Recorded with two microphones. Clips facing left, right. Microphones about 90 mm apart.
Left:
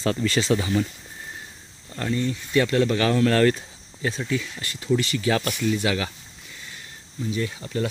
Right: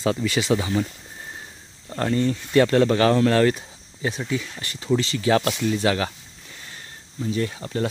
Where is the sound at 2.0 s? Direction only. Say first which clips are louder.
Right 4 dB; 40° right (ahead or behind).